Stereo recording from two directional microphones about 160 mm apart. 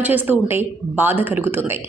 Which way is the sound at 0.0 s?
10° right (ahead or behind).